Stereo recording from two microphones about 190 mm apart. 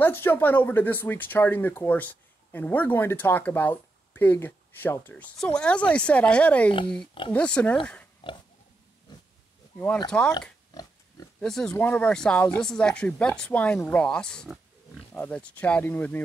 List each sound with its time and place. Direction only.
0.0 s speech: 10° left (ahead or behind)
10.1 s speech: 5° left (ahead or behind)
10.7 s pig: 20° left (ahead or behind)
11.3 s speech: 5° left (ahead or behind)